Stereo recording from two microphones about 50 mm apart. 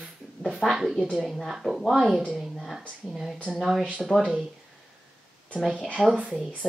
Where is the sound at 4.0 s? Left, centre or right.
Centre.